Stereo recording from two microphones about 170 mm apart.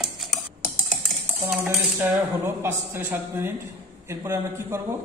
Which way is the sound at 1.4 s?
15° right (ahead or behind).